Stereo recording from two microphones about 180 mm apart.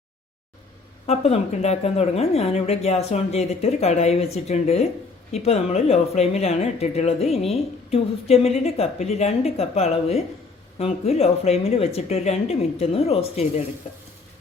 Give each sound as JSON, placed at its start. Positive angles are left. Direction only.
{"t": 1.0, "sound": "speech", "side_deg": 35}